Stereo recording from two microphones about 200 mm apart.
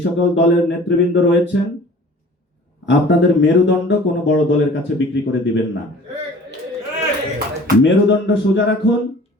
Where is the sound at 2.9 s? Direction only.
65° left (ahead or behind).